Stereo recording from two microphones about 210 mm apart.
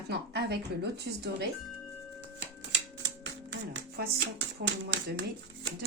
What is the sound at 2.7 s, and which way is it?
Typewriter, 60° right (ahead or behind).